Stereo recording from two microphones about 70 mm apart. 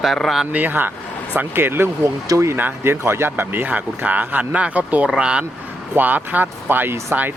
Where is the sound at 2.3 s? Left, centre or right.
Right.